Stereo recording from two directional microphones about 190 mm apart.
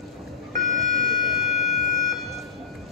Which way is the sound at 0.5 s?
45° right (ahead or behind).